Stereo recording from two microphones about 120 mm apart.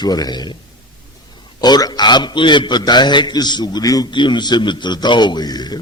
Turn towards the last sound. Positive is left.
turn(degrees=35)  # may be behind; listen again after turning